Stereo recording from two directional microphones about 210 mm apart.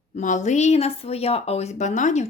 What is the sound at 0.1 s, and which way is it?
Speech, 35° left (ahead or behind).